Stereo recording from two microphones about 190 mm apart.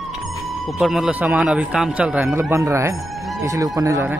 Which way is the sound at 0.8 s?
Centre (ahead or behind).